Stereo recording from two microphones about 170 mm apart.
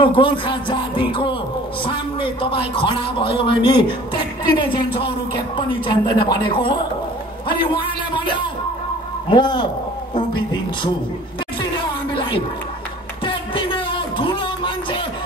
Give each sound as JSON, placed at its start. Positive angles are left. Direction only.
{"t": 0.0, "sound": "a man's voice", "side_deg": 30}
{"t": 10.1, "sound": "music", "side_deg": 25}
{"t": 13.2, "sound": "a sound", "side_deg": 30}